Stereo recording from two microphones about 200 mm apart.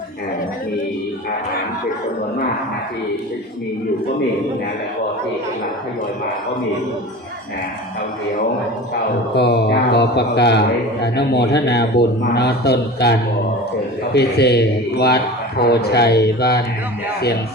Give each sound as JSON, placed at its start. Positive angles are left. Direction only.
{"t": 9.3, "sound": "a man's voice", "side_deg": 55}